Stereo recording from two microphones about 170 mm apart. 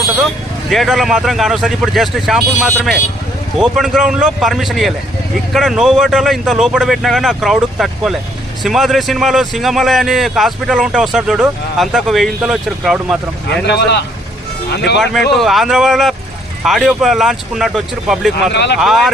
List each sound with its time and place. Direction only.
0.7 s a man's voice: centre (ahead or behind)
13.5 s speech: 80° left
15.3 s a man's voice: centre (ahead or behind)
18.5 s speech: 85° left
18.8 s a man's voice: centre (ahead or behind)